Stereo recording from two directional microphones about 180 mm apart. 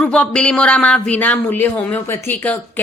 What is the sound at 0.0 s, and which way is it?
A man's voice, 5° left (ahead or behind).